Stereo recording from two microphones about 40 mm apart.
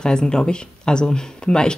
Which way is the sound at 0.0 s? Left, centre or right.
Centre.